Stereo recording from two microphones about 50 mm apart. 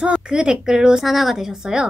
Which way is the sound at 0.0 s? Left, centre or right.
Centre.